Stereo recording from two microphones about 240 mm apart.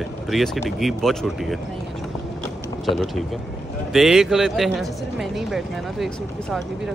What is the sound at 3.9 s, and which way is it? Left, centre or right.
Speech, centre.